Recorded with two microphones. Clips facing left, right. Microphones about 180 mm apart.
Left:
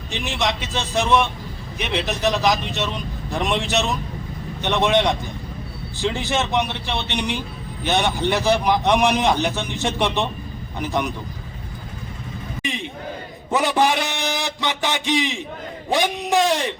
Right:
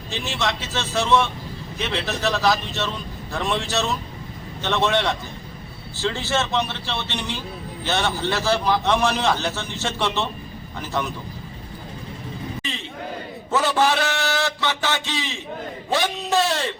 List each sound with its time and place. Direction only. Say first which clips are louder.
0.1 s a man's voice: left 2 dB; 15° left (ahead or behind)
12.6 s a man's voice: left 3 dB; 15° left (ahead or behind)